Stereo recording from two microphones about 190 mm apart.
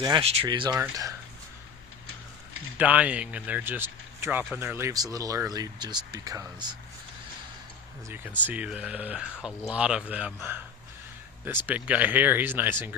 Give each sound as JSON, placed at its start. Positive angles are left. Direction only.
{"t": 0.0, "sound": "speech", "side_deg": -25}
{"t": 2.7, "sound": "speech", "side_deg": -10}
{"t": 8.4, "sound": "speech", "side_deg": -5}
{"t": 11.6, "sound": "speech", "side_deg": -10}